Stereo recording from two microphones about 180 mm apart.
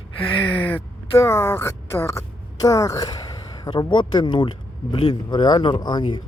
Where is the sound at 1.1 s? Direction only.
15° left (ahead or behind).